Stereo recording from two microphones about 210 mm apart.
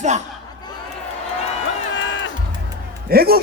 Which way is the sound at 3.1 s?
45° right (ahead or behind).